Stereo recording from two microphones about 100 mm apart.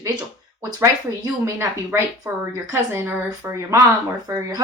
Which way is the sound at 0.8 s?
25° right (ahead or behind).